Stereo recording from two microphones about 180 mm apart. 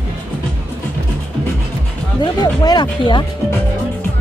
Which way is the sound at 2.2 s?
25° left (ahead or behind).